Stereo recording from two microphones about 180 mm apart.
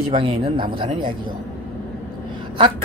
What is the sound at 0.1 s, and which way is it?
A woman's voice, 30° right (ahead or behind).